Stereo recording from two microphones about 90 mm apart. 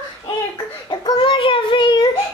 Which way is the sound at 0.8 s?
50° left (ahead or behind).